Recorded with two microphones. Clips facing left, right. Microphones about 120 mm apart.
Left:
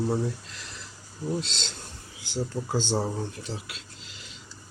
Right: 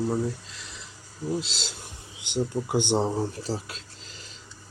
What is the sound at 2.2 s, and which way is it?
Speech, 20° right (ahead or behind).